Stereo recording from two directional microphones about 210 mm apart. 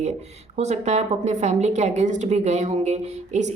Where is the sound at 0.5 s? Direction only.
30° right (ahead or behind).